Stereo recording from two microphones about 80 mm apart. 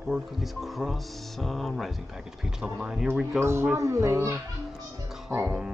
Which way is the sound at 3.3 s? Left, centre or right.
Right.